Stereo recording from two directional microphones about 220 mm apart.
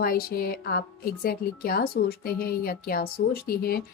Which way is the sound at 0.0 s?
45° left (ahead or behind).